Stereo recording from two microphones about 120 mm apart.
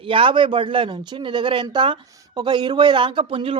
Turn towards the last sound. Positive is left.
turn(degrees=-50)  # may be behind; listen again after turning